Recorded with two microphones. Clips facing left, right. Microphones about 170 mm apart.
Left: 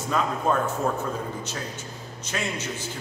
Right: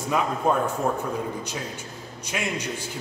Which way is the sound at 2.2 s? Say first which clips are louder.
Right 1 dB; 10° right (ahead or behind).